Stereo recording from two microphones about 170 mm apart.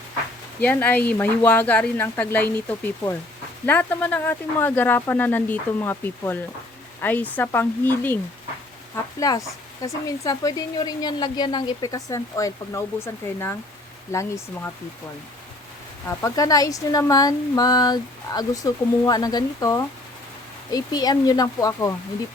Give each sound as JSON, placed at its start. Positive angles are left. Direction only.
{"t": 0.6, "sound": "speech", "side_deg": 10}
{"t": 14.1, "sound": "speech", "side_deg": 15}
{"t": 16.0, "sound": "speech", "side_deg": 20}